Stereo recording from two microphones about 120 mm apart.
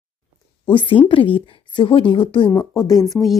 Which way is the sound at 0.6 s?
45° left (ahead or behind).